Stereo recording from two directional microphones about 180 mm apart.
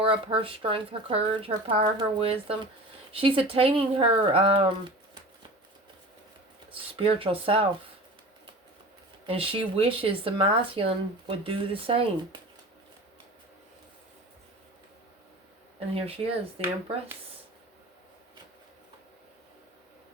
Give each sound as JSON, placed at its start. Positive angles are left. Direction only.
{"t": 0.0, "sound": "speech", "side_deg": -30}
{"t": 6.9, "sound": "speech", "side_deg": -30}
{"t": 9.2, "sound": "speech", "side_deg": -30}
{"t": 16.0, "sound": "speech", "side_deg": -35}